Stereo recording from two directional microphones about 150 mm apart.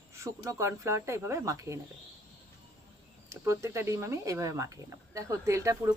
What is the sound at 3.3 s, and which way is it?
Speech, 20° right (ahead or behind).